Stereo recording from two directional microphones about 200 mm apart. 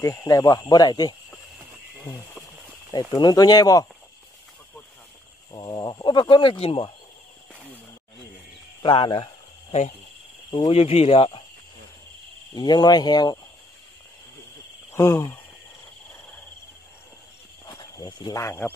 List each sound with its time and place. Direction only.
0.0 s speech: 15° left (ahead or behind)
2.9 s speech: 20° left (ahead or behind)
5.5 s speech: 20° left (ahead or behind)
8.8 s speech: 25° left (ahead or behind)
12.5 s speech: 20° left (ahead or behind)
14.9 s speech: 15° left (ahead or behind)
17.7 s speech: 20° left (ahead or behind)